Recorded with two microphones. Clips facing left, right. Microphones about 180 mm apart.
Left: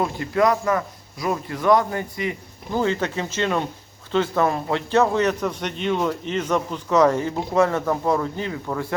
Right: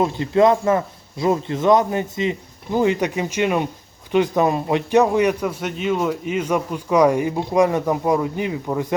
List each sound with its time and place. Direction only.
0.0 s a man's voice: 25° right (ahead or behind)